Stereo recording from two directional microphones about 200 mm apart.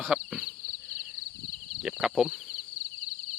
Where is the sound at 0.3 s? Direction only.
Centre (ahead or behind).